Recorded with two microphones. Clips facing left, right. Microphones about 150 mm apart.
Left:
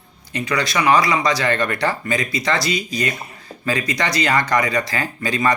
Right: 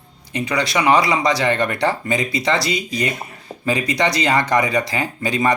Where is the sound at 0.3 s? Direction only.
25° right (ahead or behind).